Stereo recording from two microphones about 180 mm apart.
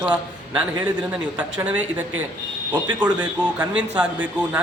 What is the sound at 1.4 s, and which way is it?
Speech, 5° right (ahead or behind).